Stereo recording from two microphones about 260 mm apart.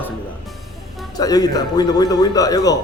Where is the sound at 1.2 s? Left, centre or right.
Centre.